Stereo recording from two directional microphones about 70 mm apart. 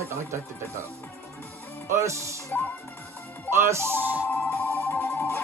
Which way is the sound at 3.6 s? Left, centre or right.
Right.